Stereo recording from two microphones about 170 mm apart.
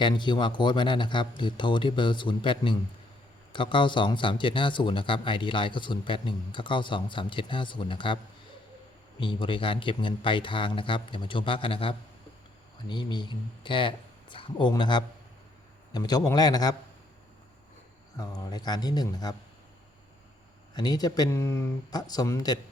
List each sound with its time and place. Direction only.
0.0 s speech: 25° left (ahead or behind)
9.2 s speech: 30° left (ahead or behind)
18.2 s speech: 20° left (ahead or behind)
20.7 s speech: 25° left (ahead or behind)